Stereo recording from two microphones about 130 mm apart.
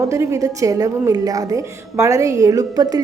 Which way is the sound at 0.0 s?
25° right (ahead or behind).